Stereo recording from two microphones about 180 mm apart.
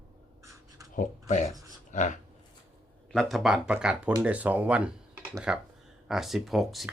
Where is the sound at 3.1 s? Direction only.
Centre (ahead or behind).